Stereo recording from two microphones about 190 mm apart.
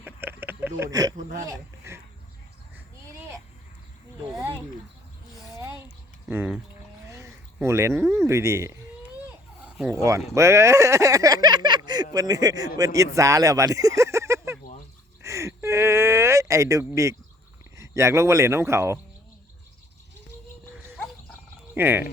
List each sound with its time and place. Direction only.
0.0 s a sound: 10° right (ahead or behind)
1.1 s speech: 40° right (ahead or behind)
1.5 s speech: 15° right (ahead or behind)
6.2 s speech: 10° right (ahead or behind)
9.9 s a man's voice: 15° right (ahead or behind)
15.2 s a sound: 15° right (ahead or behind)
17.7 s speech: 15° right (ahead or behind)
21.8 s speech: 10° right (ahead or behind)